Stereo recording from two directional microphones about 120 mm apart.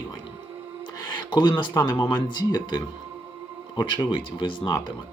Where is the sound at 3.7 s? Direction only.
40° left (ahead or behind).